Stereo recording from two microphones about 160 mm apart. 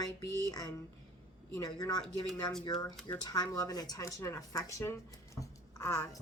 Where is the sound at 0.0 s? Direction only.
25° left (ahead or behind).